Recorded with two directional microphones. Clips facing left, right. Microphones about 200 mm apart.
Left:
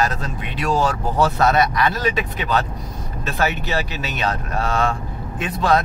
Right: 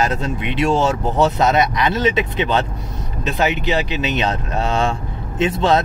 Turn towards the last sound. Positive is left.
turn(degrees=-25)  # may be behind; listen again after turning